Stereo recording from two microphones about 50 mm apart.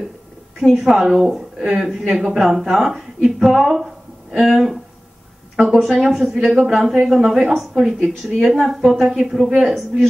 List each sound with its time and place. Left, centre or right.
0.6 s a woman's voice: centre
1.6 s a woman's voice: centre
1.9 s a woman's voice: centre